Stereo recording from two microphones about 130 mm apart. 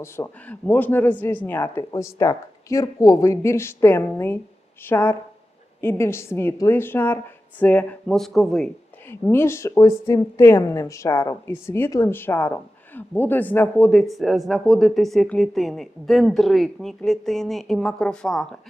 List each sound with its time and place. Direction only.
0.0 s a woman's voice: 15° left (ahead or behind)
9.3 s speech: 20° left (ahead or behind)
14.0 s speech: centre (ahead or behind)